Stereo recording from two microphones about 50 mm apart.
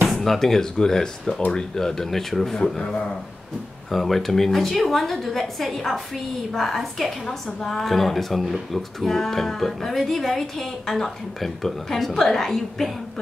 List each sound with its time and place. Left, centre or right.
0.1 s speech: centre
3.9 s a woman's voice: centre